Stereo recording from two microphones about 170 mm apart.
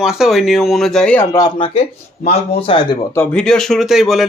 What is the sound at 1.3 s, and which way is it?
Speech, 25° left (ahead or behind).